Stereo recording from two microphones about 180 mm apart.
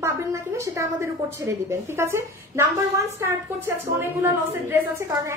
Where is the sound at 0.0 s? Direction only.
15° right (ahead or behind).